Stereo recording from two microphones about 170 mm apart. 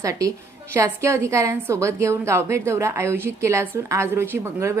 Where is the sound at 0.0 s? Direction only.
20° right (ahead or behind).